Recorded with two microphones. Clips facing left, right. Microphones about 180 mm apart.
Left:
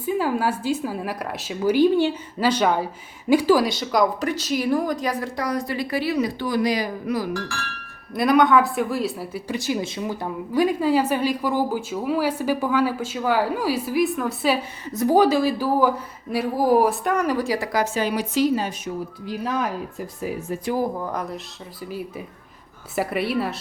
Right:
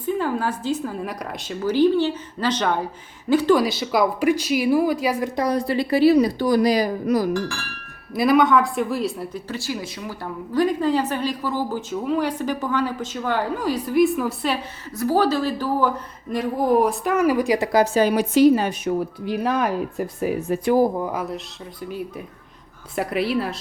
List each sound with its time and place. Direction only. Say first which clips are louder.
0.0 s a woman's voice: left 1 dB; 10° left (ahead or behind); by 5.3 s 10° right (ahead or behind)
5.4 s speech: right 6 dB; 30° right (ahead or behind)
8.1 s speech: even; centre (ahead or behind)
9.5 s a woman's voice: left 7 dB; 20° left (ahead or behind); by 14.6 s 5° left (ahead or behind)
14.9 s a woman's voice: left 2 dB; 15° left (ahead or behind); by 20.7 s 60° right (ahead or behind)
21.0 s speech: right 2 dB; 5° right (ahead or behind)